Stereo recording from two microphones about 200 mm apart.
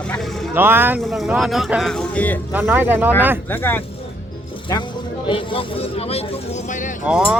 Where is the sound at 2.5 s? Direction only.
10° right (ahead or behind).